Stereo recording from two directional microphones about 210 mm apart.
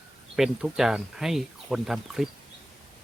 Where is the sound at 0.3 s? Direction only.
Centre (ahead or behind).